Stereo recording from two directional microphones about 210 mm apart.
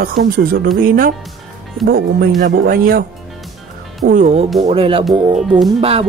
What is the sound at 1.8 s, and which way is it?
Speech, 45° right (ahead or behind).